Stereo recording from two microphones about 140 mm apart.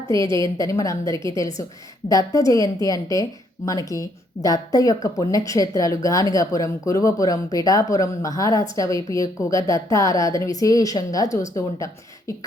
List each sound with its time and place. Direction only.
0.1 s speech: 25° left (ahead or behind)